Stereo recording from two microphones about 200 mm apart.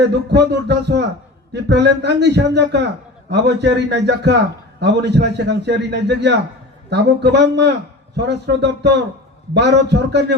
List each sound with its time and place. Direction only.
0.1 s a man's voice: 60° right (ahead or behind)